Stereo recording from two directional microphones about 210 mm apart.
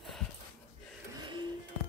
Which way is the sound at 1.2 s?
20° right (ahead or behind).